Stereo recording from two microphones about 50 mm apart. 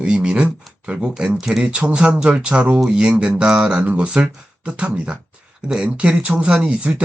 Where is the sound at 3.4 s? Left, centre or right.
Centre.